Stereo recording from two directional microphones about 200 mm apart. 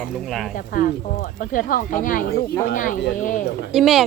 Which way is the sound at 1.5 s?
40° left (ahead or behind).